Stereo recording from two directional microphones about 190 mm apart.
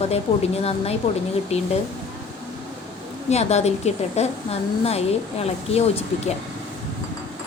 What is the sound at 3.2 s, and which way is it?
A woman's voice, 35° left (ahead or behind).